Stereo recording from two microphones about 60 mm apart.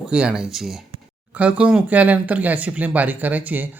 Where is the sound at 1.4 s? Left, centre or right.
Right.